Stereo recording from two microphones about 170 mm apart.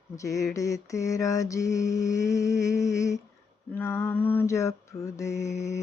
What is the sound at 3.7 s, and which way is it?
Mantra, 15° left (ahead or behind).